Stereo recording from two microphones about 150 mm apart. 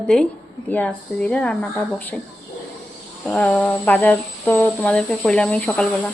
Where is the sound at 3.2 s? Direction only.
5° left (ahead or behind).